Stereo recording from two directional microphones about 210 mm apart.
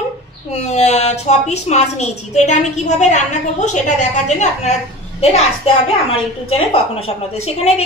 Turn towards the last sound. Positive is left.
turn(degrees=30)  # may be behind; listen again after turning